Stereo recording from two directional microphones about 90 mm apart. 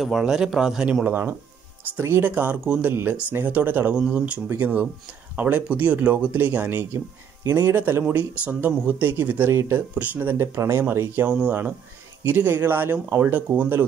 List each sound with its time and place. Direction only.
0.0 s speech: 5° right (ahead or behind)
1.0 s speech: 25° right (ahead or behind)
2.9 s speech: 25° right (ahead or behind)